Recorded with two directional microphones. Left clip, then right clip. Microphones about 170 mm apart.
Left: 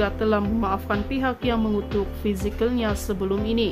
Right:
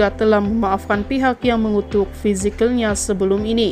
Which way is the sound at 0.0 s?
25° right (ahead or behind).